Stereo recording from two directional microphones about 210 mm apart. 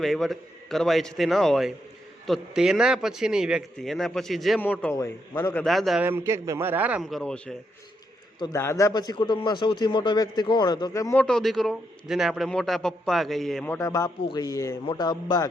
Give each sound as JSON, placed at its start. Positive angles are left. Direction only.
{"t": 0.0, "sound": "speech", "side_deg": 0}
{"t": 5.6, "sound": "a man's voice", "side_deg": 0}
{"t": 13.7, "sound": "speech", "side_deg": 15}